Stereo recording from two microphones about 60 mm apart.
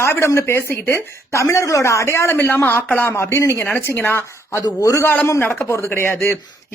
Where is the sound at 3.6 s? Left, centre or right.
Left.